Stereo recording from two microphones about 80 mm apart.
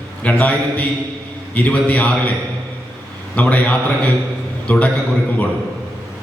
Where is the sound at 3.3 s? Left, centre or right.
Centre.